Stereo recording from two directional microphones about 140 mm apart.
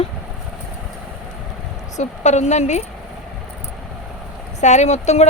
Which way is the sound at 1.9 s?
55° left (ahead or behind).